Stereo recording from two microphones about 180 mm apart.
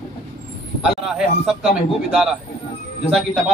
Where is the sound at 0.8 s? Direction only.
5° right (ahead or behind).